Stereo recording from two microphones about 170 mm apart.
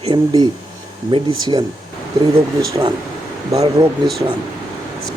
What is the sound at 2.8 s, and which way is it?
Speech, 25° right (ahead or behind).